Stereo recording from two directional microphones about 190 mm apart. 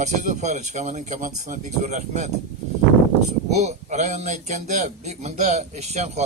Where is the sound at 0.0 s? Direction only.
40° right (ahead or behind).